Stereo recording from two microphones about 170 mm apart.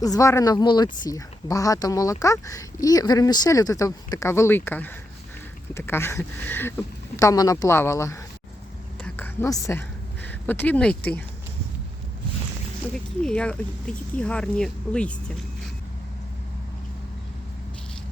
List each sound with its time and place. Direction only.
0.0 s speech: 20° left (ahead or behind)
9.0 s a sound: 10° left (ahead or behind)
10.4 s speech: 10° left (ahead or behind)
13.2 s speech: 5° left (ahead or behind)